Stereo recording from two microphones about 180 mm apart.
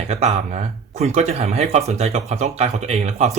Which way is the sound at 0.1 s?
40° right (ahead or behind).